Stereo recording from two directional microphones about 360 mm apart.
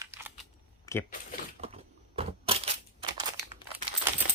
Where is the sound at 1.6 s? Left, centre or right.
Centre.